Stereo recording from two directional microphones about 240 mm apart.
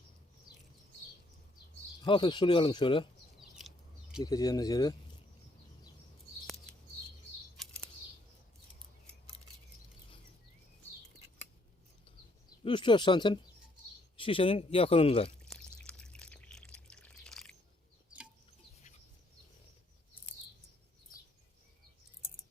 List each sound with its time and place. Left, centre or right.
2.0 s speech: centre
4.2 s speech: centre
6.7 s a sound: centre
7.5 s bird flight: centre
12.6 s speech: centre
15.4 s a sound: centre